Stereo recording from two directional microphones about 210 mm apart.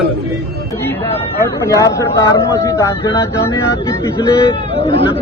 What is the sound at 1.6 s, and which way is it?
Speech, 15° left (ahead or behind).